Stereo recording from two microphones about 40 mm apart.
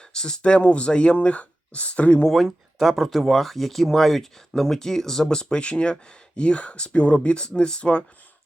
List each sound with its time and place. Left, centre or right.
0.1 s speech: centre
2.3 s speech: centre; by 8.0 s left